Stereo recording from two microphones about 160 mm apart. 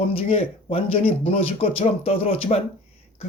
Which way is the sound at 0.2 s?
40° left (ahead or behind).